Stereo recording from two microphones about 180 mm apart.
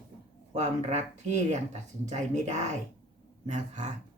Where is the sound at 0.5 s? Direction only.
40° right (ahead or behind).